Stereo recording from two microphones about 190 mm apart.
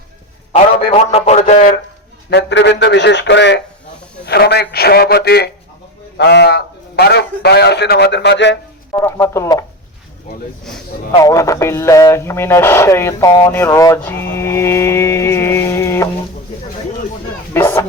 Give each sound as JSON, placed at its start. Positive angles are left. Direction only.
{"t": 0.5, "sound": "a man's voice", "side_deg": 30}
{"t": 2.3, "sound": "a man's voice", "side_deg": 65}
{"t": 8.9, "sound": "speech", "side_deg": 15}
{"t": 11.2, "sound": "speech", "side_deg": 15}
{"t": 17.5, "sound": "speech", "side_deg": 10}